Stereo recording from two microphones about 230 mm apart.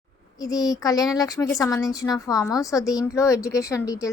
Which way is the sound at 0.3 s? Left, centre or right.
Centre.